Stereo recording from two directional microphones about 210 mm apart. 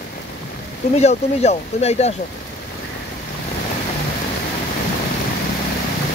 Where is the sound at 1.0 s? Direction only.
30° left (ahead or behind).